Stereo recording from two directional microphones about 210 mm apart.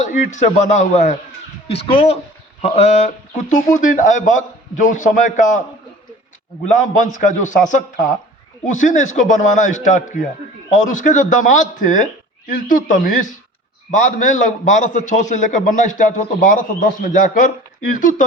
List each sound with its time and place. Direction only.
0.0 s a man's voice: 35° left (ahead or behind)
6.7 s a man's voice: 35° left (ahead or behind)